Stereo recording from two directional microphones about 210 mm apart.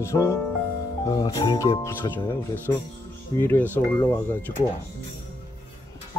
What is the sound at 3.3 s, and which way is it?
Speech, 10° left (ahead or behind).